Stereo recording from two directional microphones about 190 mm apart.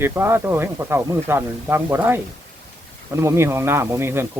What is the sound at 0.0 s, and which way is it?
Speech, 10° right (ahead or behind).